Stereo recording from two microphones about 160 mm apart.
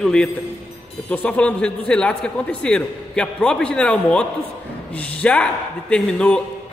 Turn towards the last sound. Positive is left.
turn(degrees=5)  # may be behind; listen again after turning